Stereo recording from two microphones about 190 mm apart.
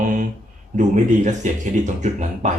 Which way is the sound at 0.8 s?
40° right (ahead or behind).